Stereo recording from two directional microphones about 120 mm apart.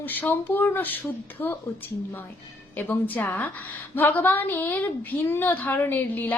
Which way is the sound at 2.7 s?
15° left (ahead or behind).